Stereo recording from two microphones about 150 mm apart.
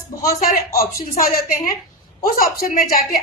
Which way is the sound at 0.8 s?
70° left (ahead or behind).